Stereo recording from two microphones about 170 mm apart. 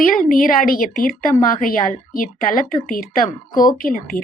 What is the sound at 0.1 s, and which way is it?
A woman's voice, 55° left (ahead or behind).